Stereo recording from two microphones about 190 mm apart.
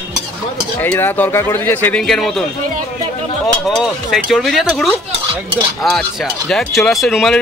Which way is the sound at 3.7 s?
Centre (ahead or behind).